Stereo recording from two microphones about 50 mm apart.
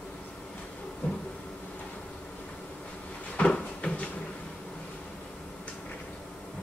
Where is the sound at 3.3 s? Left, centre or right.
Left.